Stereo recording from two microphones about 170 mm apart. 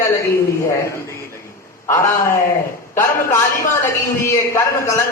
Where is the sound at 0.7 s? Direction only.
15° left (ahead or behind).